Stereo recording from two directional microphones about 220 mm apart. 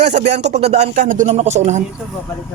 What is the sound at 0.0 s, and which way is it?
Speech, 30° right (ahead or behind).